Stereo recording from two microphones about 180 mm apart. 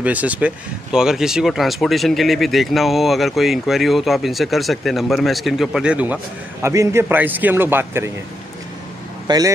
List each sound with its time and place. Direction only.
0.0 s a man's voice: 10° right (ahead or behind)
9.3 s speech: 25° right (ahead or behind)